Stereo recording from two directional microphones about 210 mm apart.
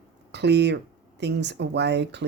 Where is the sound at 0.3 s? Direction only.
55° right (ahead or behind).